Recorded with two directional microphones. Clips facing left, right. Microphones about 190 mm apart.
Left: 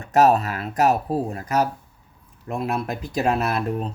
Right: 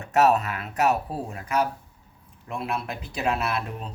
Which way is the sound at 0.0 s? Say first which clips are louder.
Left 3 dB; 35° left (ahead or behind).